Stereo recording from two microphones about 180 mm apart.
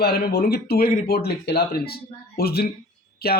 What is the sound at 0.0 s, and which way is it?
Speech, 60° left (ahead or behind).